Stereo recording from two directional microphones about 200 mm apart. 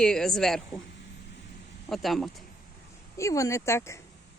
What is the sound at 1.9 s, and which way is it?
Speech, centre (ahead or behind).